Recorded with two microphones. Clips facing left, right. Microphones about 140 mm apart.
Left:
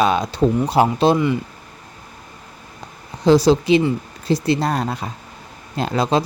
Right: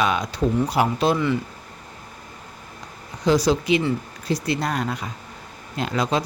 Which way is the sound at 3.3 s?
30° left (ahead or behind).